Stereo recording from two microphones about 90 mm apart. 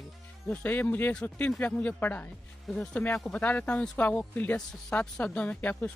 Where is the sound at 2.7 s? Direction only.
10° left (ahead or behind).